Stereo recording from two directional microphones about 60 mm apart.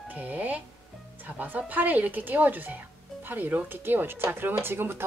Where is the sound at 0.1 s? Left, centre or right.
Right.